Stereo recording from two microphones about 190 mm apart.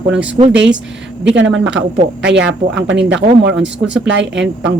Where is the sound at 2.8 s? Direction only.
65° right (ahead or behind).